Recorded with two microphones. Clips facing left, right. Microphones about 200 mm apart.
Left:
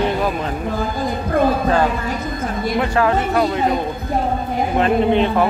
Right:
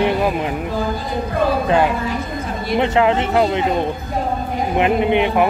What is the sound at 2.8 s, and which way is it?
Speech, 20° right (ahead or behind).